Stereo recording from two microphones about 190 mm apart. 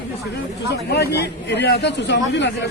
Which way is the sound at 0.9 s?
60° left (ahead or behind).